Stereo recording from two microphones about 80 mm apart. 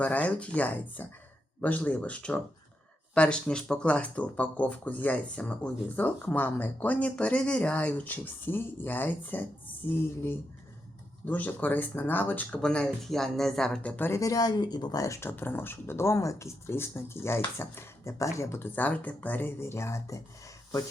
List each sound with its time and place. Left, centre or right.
0.0 s speech: centre
6.2 s speech: left
11.3 s speech: left
12.6 s speech: centre
13.9 s speech: left
14.2 s speech: left
15.0 s speech: left